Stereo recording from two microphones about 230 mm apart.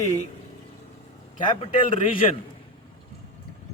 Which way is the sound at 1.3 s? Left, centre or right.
Left.